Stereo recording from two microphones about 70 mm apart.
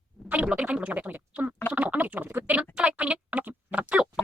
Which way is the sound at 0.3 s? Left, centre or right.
Right.